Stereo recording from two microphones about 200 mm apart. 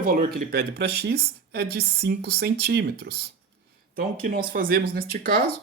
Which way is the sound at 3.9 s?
45° right (ahead or behind).